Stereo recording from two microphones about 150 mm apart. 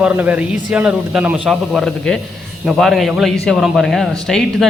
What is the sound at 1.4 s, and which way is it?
Speech, 5° left (ahead or behind).